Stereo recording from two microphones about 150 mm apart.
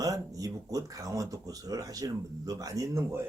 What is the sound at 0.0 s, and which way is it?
Speech, 25° right (ahead or behind).